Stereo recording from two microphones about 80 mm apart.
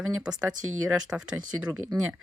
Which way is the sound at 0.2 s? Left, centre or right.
Centre.